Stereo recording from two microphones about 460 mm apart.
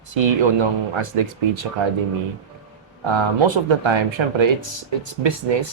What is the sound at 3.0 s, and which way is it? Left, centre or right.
Speech, right.